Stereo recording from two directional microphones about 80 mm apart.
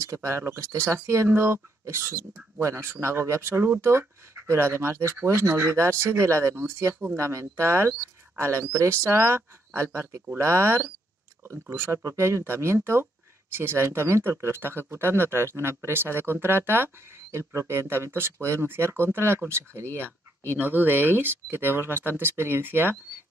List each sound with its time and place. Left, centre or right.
0.0 s speech: right